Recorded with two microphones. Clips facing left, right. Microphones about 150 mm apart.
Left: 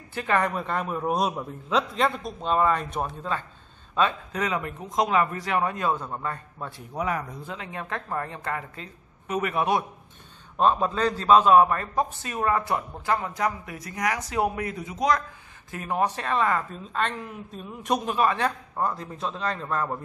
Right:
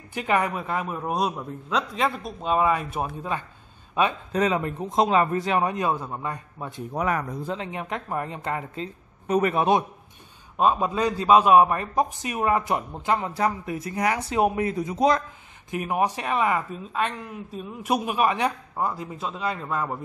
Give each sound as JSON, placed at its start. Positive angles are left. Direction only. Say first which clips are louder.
{"t": 0.1, "sound": "speech", "louder": "right 1 dB", "side_deg": -15}
{"t": 4.3, "sound": "a woman's voice", "louder": "right 5 dB", "side_deg": -30}
{"t": 7.0, "sound": "speech", "louder": "right 2 dB", "side_deg": -55}
{"t": 7.4, "sound": "a woman's voice", "louder": "right 5 dB", "side_deg": -25}
{"t": 10.6, "sound": "a man's voice", "louder": "even", "side_deg": -10}
{"t": 15.7, "sound": "speech", "louder": "right 2 dB", "side_deg": -15}